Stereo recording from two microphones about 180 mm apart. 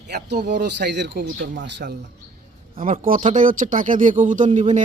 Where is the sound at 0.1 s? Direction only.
65° right (ahead or behind).